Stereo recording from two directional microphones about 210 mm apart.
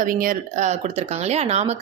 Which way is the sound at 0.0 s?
40° right (ahead or behind).